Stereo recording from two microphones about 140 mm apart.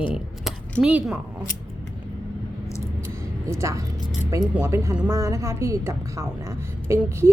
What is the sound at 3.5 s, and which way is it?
A woman's voice, 20° right (ahead or behind).